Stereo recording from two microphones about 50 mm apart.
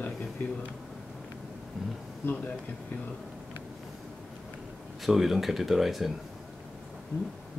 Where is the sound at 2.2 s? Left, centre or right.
Left.